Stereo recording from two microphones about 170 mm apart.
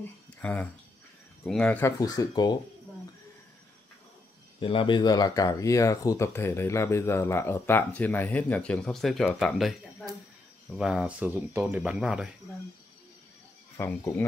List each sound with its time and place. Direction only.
0.4 s speech: 10° left (ahead or behind); by 2.6 s 25° left (ahead or behind)
4.6 s speech: 30° left (ahead or behind); by 12.4 s 5° right (ahead or behind)
13.7 s speech: 10° left (ahead or behind)